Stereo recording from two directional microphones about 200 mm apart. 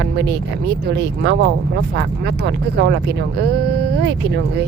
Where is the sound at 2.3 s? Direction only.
55° right (ahead or behind).